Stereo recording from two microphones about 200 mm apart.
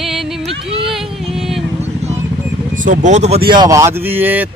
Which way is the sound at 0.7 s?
25° right (ahead or behind).